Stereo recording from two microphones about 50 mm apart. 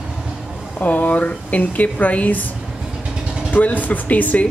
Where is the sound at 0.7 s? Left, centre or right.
Left.